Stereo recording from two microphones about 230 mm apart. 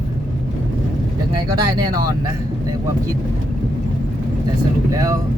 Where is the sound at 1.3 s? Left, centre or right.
Centre.